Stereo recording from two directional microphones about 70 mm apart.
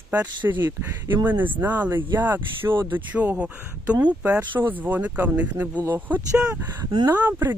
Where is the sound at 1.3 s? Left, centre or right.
Right.